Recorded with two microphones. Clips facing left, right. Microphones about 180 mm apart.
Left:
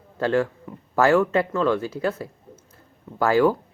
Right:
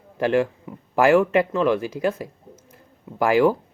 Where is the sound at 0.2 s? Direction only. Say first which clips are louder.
Right 2 dB; 15° right (ahead or behind).